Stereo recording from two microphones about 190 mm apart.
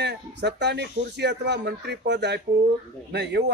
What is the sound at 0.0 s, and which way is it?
Speech, 60° right (ahead or behind).